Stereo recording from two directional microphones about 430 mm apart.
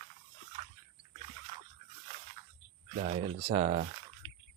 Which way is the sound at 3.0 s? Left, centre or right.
Centre.